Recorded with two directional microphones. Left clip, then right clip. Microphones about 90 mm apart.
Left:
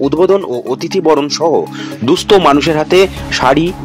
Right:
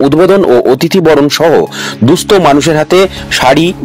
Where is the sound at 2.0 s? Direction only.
25° right (ahead or behind).